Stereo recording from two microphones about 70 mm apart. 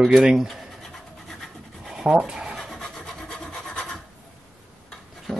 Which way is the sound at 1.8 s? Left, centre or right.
Centre.